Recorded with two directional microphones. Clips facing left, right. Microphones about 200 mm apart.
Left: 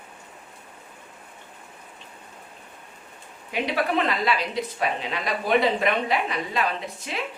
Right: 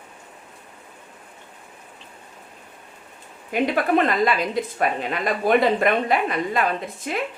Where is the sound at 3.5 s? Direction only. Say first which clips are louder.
Right 5 dB; 50° right (ahead or behind).